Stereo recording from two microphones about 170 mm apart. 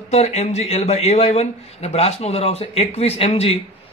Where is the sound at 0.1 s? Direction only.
40° left (ahead or behind).